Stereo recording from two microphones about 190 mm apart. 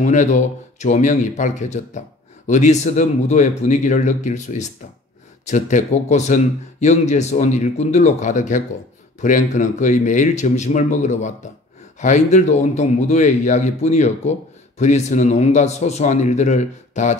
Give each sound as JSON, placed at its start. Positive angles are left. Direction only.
{"t": 0.0, "sound": "speech", "side_deg": 40}